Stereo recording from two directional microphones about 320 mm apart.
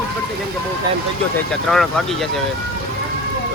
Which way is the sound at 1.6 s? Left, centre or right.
Centre.